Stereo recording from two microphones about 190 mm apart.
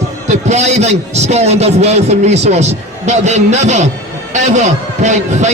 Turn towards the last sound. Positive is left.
turn(degrees=-40)  # may be behind; listen again after turning